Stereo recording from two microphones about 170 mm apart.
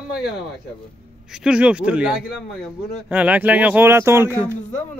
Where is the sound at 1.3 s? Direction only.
5° right (ahead or behind).